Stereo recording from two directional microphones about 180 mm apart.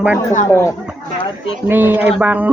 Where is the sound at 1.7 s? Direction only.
10° right (ahead or behind).